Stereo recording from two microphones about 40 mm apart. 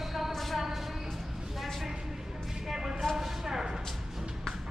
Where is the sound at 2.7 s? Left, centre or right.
Centre.